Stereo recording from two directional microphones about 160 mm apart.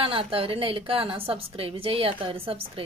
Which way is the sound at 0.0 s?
35° right (ahead or behind).